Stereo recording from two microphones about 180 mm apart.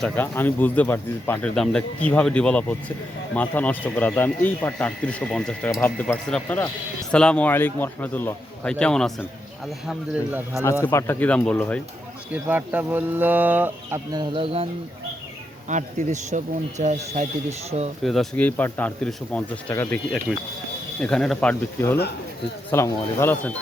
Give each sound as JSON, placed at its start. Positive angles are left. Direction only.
{"t": 0.0, "sound": "a man's voice", "side_deg": 10}
{"t": 10.6, "sound": "speech", "side_deg": 15}
{"t": 12.3, "sound": "speech", "side_deg": -10}
{"t": 14.1, "sound": "speech", "side_deg": -25}
{"t": 15.7, "sound": "speech", "side_deg": -40}
{"t": 18.0, "sound": "speech", "side_deg": 0}